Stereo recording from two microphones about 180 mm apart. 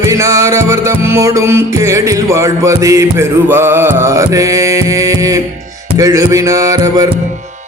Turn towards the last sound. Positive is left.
turn(degrees=-20)  # may be behind; listen again after turning